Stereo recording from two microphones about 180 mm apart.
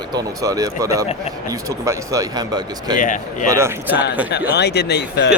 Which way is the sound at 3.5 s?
15° right (ahead or behind).